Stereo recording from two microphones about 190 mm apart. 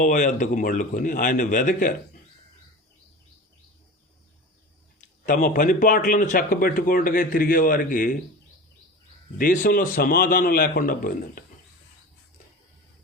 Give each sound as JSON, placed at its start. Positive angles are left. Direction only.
{"t": 0.0, "sound": "speech", "side_deg": 40}
{"t": 5.2, "sound": "speech", "side_deg": 45}
{"t": 9.4, "sound": "speech", "side_deg": 45}